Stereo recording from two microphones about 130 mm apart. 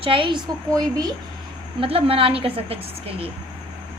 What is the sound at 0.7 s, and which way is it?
Speech, 30° right (ahead or behind).